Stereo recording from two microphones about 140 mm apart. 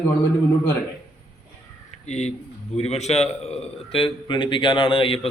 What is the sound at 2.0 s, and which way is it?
A man's voice, 50° left (ahead or behind).